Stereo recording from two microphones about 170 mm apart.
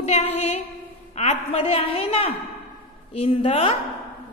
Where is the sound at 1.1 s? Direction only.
40° left (ahead or behind).